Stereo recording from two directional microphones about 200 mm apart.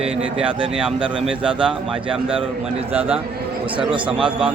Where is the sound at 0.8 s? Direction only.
5° right (ahead or behind).